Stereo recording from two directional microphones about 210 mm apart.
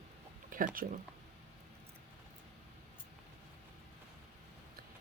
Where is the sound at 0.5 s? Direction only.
40° right (ahead or behind).